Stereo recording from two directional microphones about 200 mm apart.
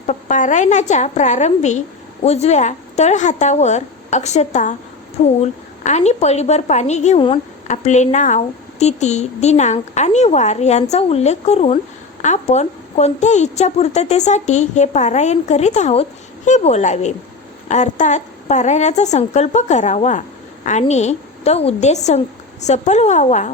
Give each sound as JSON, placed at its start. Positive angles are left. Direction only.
{"t": 0.1, "sound": "a woman's voice", "side_deg": 40}